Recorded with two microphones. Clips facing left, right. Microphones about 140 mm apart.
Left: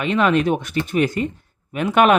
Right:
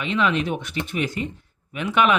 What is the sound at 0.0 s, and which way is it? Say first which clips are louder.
Speech: left 5 dB; 50° left (ahead or behind).